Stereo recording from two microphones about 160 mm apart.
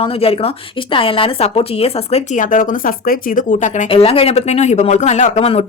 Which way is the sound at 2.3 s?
55° left (ahead or behind).